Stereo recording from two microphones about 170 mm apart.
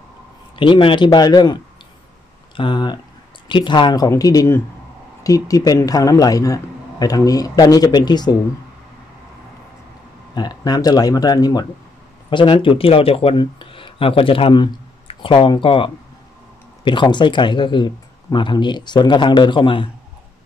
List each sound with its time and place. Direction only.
0.6 s a man's voice: 30° left (ahead or behind)
10.3 s a man's voice: 25° left (ahead or behind)